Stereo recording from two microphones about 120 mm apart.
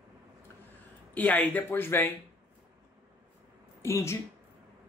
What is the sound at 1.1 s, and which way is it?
Speech, 15° left (ahead or behind).